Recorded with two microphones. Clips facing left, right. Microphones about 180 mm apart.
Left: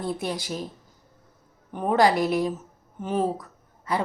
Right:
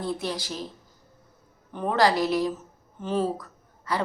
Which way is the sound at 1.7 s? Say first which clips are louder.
Left 2 dB; 15° left (ahead or behind).